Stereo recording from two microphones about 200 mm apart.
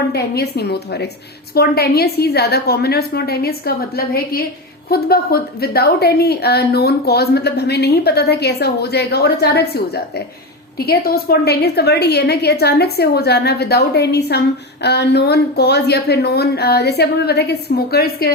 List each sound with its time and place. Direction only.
0.1 s a woman's voice: 55° left (ahead or behind)